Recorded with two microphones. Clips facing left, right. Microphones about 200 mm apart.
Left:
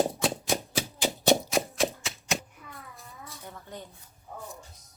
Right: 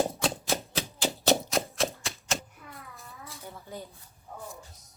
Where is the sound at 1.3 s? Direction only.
Centre (ahead or behind).